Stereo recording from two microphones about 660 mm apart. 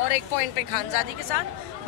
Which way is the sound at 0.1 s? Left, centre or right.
Left.